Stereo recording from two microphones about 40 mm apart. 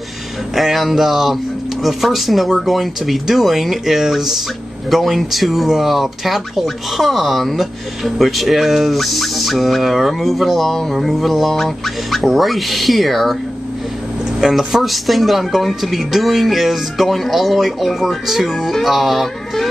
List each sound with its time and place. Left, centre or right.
0.6 s speech: centre
14.5 s speech: centre